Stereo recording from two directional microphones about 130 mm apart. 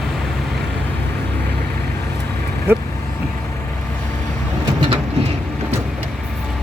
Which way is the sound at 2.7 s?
20° right (ahead or behind).